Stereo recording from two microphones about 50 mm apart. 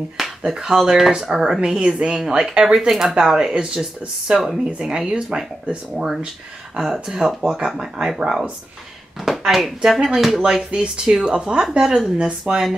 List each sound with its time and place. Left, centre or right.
0.4 s speech: centre
10.7 s speech: centre